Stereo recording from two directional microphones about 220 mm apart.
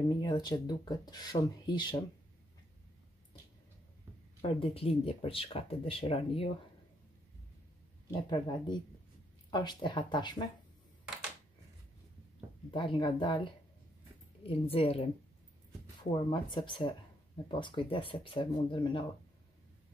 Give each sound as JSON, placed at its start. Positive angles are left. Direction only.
{"t": 0.2, "sound": "speech", "side_deg": 20}
{"t": 4.4, "sound": "speech", "side_deg": 25}
{"t": 8.3, "sound": "speech", "side_deg": 20}
{"t": 12.7, "sound": "speech", "side_deg": 20}